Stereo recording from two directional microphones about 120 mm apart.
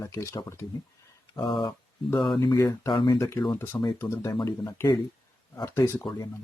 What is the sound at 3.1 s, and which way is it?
Speech, 25° left (ahead or behind).